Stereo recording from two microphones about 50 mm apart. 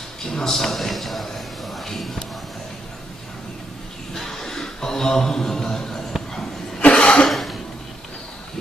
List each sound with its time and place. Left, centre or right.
0.2 s a man's voice: centre
4.1 s a sound: centre
6.8 s cough: left
7.2 s cough: centre